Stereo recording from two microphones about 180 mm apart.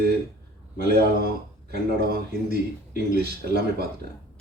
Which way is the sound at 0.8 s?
60° right (ahead or behind).